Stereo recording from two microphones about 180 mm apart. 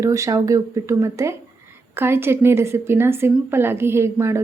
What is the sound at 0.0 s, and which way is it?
A woman's voice, 15° right (ahead or behind).